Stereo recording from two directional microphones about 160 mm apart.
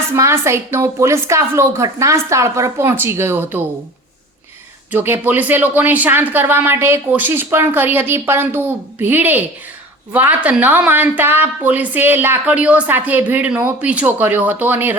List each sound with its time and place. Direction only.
0.2 s a woman's voice: 15° right (ahead or behind)
4.9 s a woman's voice: 15° right (ahead or behind)